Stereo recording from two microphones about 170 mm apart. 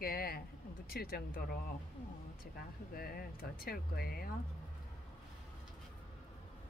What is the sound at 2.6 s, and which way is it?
Speech, 60° left (ahead or behind).